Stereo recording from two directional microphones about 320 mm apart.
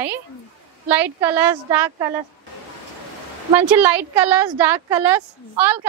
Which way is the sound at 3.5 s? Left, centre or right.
Centre.